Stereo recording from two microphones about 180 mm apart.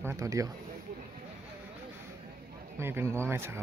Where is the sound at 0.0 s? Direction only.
15° right (ahead or behind).